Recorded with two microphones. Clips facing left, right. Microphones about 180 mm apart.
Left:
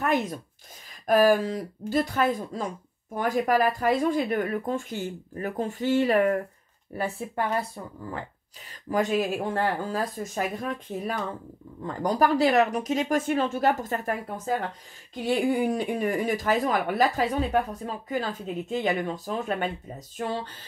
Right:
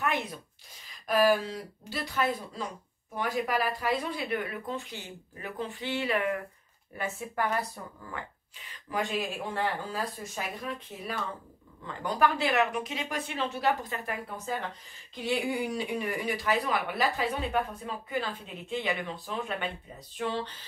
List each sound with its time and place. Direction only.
0.0 s speech: 45° left (ahead or behind)
7.0 s speech: 35° left (ahead or behind)
8.9 s speech: 45° left (ahead or behind)